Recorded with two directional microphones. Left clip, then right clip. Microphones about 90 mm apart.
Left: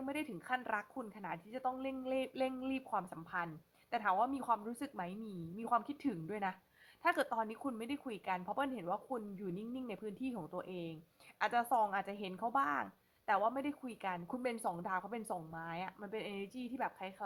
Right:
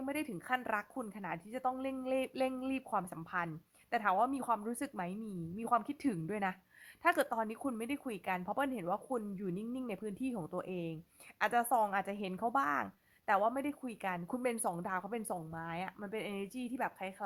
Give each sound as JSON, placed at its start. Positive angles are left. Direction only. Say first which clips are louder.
{"t": 0.0, "sound": "a woman's voice", "louder": "right 2 dB", "side_deg": -25}